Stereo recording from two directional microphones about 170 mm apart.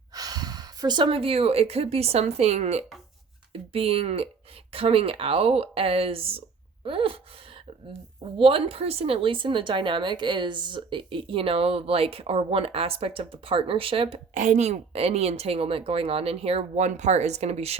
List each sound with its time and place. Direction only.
0.1 s speech: 20° right (ahead or behind)
8.4 s speech: 30° right (ahead or behind)